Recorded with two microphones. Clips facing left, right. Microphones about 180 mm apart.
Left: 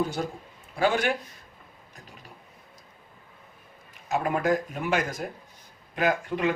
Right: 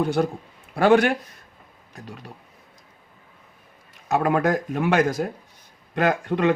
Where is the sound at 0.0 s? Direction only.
65° right (ahead or behind).